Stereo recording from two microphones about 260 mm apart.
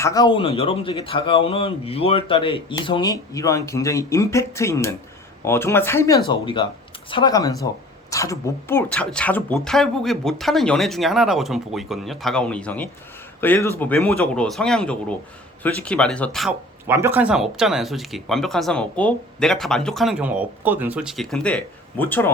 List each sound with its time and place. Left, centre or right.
0.0 s speech: centre